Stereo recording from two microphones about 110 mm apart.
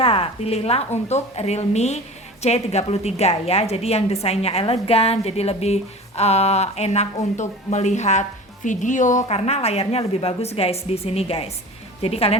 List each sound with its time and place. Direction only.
0.0 s a woman's voice: 60° left (ahead or behind); by 8.3 s 90° left
9.2 s a woman's voice: 70° left (ahead or behind)